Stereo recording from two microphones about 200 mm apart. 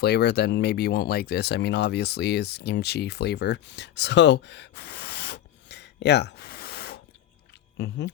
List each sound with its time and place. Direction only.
0.0 s speech: 55° left (ahead or behind)